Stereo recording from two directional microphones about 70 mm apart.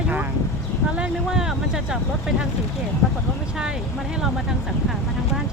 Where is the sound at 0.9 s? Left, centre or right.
Centre.